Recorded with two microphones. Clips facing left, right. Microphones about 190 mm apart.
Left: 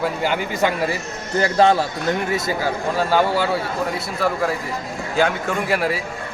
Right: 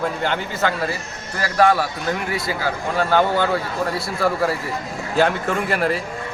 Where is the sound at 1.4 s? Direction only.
25° left (ahead or behind).